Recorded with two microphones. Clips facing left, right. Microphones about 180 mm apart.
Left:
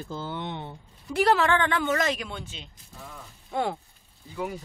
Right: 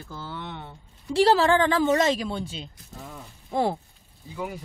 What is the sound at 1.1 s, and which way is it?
A woman's voice, 30° right (ahead or behind).